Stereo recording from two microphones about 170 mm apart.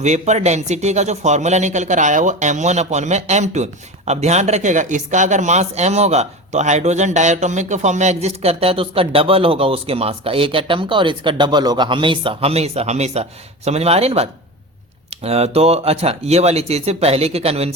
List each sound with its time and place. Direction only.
0.0 s speech: 45° right (ahead or behind)